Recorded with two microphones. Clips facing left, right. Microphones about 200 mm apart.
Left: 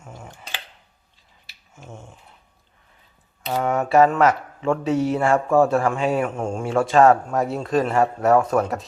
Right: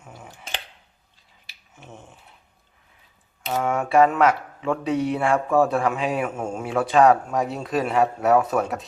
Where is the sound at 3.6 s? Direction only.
Centre (ahead or behind).